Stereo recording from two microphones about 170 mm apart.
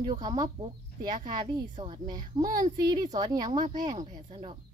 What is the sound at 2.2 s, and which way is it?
Speech, 50° right (ahead or behind).